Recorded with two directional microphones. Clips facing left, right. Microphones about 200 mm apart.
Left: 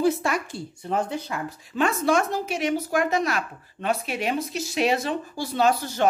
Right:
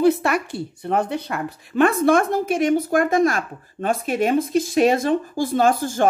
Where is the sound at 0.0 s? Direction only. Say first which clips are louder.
Right 5 dB; 65° right (ahead or behind).